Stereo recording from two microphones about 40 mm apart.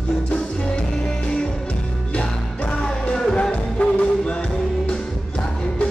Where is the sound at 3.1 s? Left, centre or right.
Centre.